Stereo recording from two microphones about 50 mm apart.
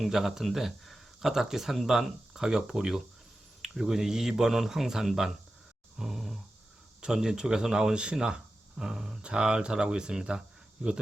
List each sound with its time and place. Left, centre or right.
0.0 s speech: centre
6.0 s grunt: centre
7.0 s speech: centre